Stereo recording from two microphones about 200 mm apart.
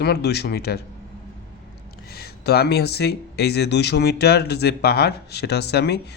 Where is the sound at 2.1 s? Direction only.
50° left (ahead or behind).